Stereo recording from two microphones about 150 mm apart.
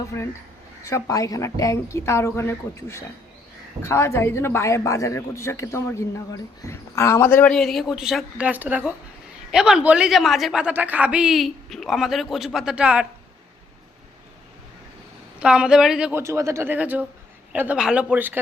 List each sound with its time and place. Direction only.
0.1 s a man's voice: 15° left (ahead or behind); by 13.1 s 5° right (ahead or behind)
15.4 s a woman's voice: 5° right (ahead or behind)
16.2 s speech: 20° right (ahead or behind)